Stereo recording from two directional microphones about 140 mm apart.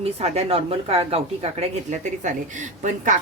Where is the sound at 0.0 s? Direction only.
45° right (ahead or behind).